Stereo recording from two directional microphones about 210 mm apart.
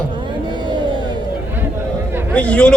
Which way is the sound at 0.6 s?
20° right (ahead or behind).